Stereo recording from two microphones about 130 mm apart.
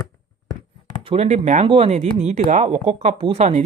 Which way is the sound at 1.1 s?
55° right (ahead or behind).